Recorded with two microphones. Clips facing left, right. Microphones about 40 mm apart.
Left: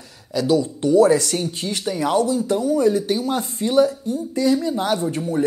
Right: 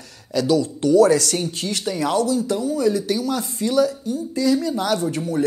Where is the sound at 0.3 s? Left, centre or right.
Centre.